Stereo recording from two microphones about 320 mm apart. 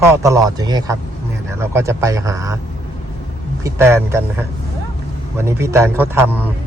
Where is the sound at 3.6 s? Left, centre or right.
Centre.